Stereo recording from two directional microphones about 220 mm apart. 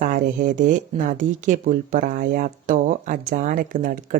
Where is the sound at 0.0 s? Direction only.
35° right (ahead or behind).